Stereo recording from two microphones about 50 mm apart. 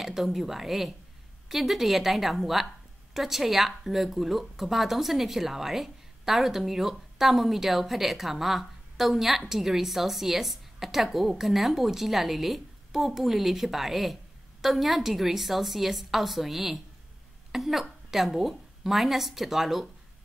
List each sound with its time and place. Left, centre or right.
0.0 s a woman's voice: centre